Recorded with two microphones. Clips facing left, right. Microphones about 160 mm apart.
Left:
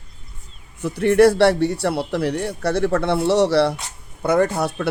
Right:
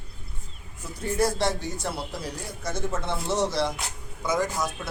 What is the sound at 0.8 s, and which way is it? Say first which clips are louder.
Speech: left 12 dB; 70° left (ahead or behind).